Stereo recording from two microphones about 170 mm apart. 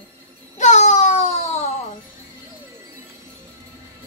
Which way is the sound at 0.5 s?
45° left (ahead or behind).